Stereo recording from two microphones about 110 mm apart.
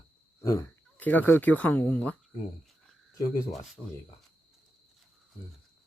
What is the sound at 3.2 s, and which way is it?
Speech, 35° left (ahead or behind).